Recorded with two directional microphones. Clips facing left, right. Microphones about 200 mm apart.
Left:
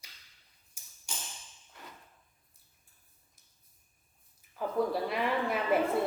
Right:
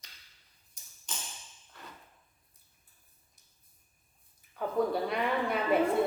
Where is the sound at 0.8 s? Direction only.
10° left (ahead or behind).